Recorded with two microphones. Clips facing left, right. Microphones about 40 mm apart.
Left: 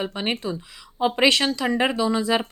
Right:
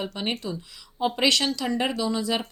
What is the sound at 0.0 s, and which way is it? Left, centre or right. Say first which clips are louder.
A woman's voice: left 3 dB; left.